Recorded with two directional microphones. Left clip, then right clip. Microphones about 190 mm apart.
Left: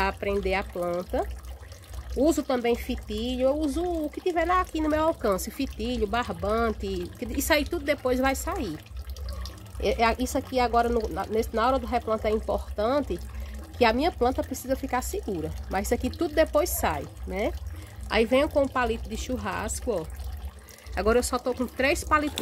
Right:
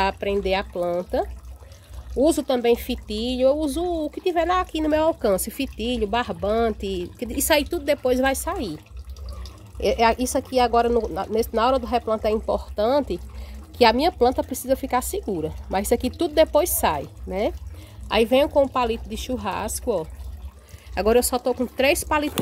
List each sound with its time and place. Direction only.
0.0 s speech: 55° right (ahead or behind)
9.8 s speech: 50° right (ahead or behind)